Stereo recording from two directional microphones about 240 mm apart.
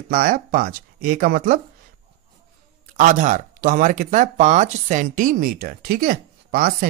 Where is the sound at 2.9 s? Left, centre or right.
Right.